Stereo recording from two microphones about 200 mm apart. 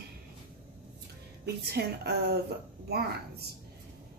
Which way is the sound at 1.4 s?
55° right (ahead or behind).